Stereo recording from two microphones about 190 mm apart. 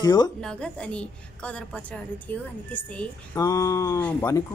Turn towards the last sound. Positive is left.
turn(degrees=10)  # may be behind; listen again after turning